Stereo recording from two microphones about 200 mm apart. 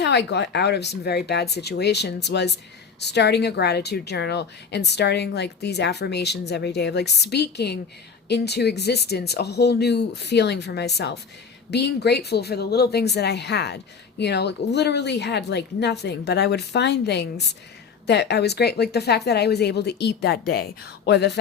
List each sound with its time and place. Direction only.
0.0 s speech: 60° left (ahead or behind)